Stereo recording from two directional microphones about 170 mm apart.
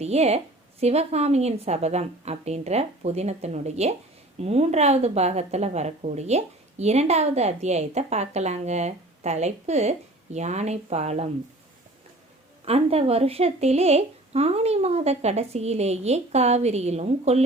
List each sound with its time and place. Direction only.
0.0 s a woman's voice: 40° right (ahead or behind)
12.6 s a woman's voice: 35° right (ahead or behind)